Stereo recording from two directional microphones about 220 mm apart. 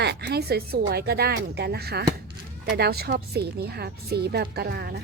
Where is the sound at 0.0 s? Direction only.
50° right (ahead or behind).